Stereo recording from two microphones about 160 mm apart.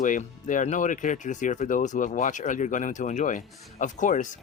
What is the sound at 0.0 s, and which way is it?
Speech, 55° left (ahead or behind).